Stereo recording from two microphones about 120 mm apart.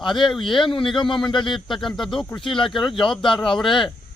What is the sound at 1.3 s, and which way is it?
Speech, 40° left (ahead or behind).